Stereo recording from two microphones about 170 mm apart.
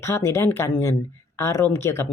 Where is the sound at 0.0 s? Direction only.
15° left (ahead or behind).